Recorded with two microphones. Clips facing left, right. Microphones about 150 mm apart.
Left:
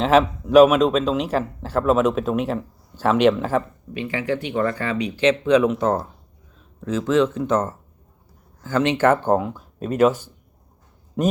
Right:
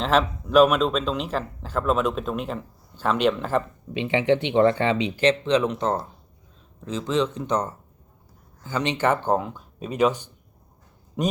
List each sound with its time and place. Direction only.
0.0 s a man's voice: 5° left (ahead or behind)
3.9 s speech: 25° right (ahead or behind)
5.2 s speech: 10° left (ahead or behind)
9.0 s a man's voice: 5° left (ahead or behind)